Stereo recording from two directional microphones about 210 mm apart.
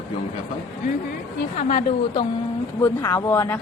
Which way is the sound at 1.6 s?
30° left (ahead or behind).